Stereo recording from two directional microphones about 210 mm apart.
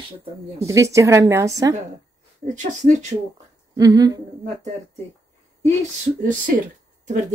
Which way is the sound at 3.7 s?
15° right (ahead or behind).